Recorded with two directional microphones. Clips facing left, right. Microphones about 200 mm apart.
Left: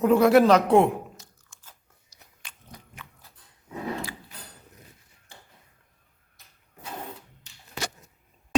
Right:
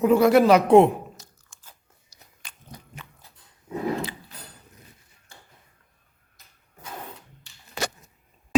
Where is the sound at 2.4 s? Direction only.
40° right (ahead or behind).